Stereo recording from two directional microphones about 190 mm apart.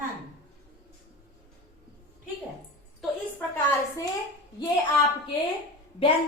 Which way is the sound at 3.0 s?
10° left (ahead or behind).